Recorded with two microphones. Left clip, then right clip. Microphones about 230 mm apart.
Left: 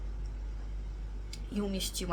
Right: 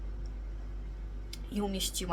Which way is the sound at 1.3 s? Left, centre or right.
Centre.